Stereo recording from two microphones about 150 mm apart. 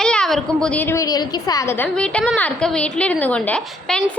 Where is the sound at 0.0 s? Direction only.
5° left (ahead or behind); by 1.7 s 25° left (ahead or behind).